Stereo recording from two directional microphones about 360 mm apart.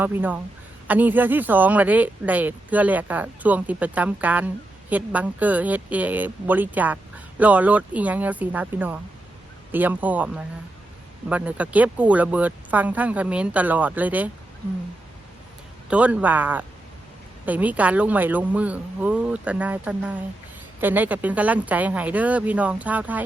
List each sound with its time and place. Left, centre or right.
0.0 s speech: centre
15.9 s speech: centre